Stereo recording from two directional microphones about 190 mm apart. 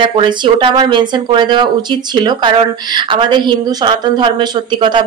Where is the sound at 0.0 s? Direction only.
25° right (ahead or behind).